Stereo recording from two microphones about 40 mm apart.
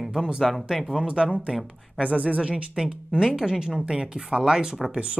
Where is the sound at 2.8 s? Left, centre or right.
Centre.